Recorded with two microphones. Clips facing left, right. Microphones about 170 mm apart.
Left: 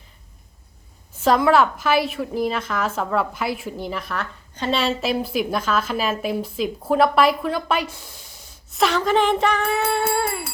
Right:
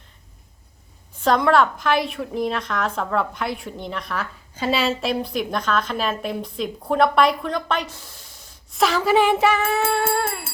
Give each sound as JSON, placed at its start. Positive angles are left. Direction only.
{"t": 1.2, "sound": "a woman's voice", "side_deg": 5}